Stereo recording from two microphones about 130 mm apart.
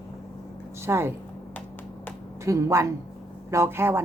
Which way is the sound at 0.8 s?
20° right (ahead or behind).